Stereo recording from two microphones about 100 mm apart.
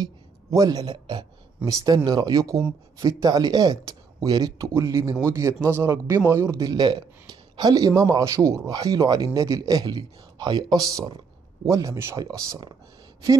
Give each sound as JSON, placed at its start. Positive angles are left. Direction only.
{"t": 0.5, "sound": "speech", "side_deg": -40}
{"t": 1.6, "sound": "speech", "side_deg": -35}